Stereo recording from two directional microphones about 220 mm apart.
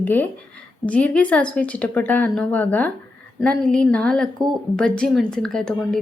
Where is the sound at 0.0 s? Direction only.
10° left (ahead or behind).